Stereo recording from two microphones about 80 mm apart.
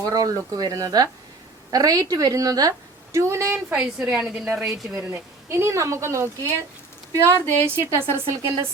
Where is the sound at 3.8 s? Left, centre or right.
Centre.